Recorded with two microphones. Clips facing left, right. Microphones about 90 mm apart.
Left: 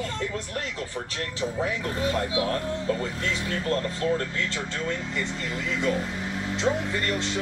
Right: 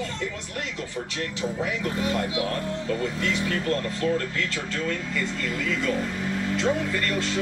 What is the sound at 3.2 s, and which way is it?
Speech, 35° left (ahead or behind).